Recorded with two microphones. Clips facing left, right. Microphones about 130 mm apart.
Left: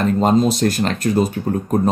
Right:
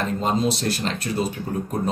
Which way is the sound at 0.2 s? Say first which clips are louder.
Left 7 dB; 45° left (ahead or behind).